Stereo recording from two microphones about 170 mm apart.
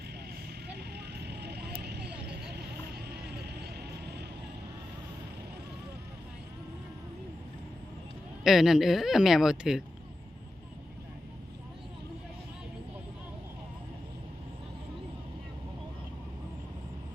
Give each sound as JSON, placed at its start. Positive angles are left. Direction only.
{"t": 0.7, "sound": "vehicle", "side_deg": -75}
{"t": 8.4, "sound": "speech", "side_deg": 0}